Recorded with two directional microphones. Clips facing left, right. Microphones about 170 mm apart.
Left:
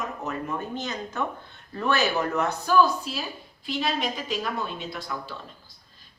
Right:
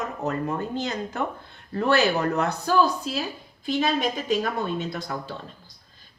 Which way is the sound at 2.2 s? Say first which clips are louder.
Right 2 dB; 35° right (ahead or behind).